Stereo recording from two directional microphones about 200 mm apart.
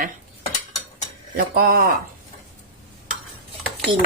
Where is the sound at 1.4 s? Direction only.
50° right (ahead or behind).